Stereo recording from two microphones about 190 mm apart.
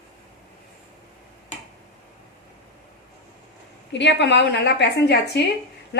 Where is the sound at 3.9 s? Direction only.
70° left (ahead or behind).